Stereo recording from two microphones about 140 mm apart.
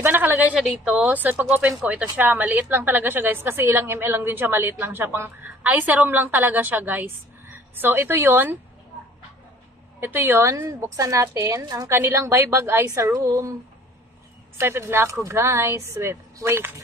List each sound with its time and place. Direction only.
0.0 s a woman's voice: 15° right (ahead or behind)
9.9 s a woman's voice: 15° right (ahead or behind)
14.6 s a woman's voice: 20° right (ahead or behind)